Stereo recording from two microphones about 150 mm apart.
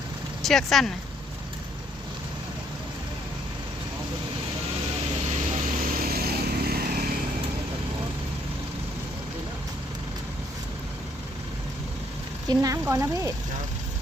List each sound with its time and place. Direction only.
0.4 s speech: centre (ahead or behind)
5.5 s vehicle: 80° right
12.5 s speech: 20° right (ahead or behind)